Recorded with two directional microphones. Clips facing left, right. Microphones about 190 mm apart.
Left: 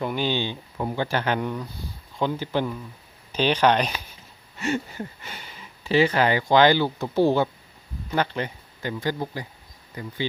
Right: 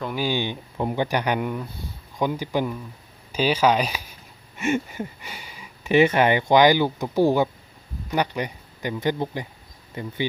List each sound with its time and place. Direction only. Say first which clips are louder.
0.2 s speech: right 1 dB; 10° right (ahead or behind)
4.5 s a sound: right 3 dB; 20° right (ahead or behind)
5.3 s speech: right 1 dB; 10° right (ahead or behind); by 10.2 s 25° right (ahead or behind)